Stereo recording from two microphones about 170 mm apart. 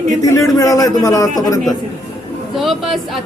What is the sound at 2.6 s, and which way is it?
Speech, centre (ahead or behind).